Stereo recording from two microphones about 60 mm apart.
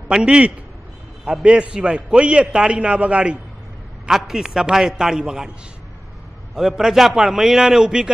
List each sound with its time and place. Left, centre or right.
0.1 s a man's voice: centre
4.1 s a man's voice: centre
6.5 s a man's voice: centre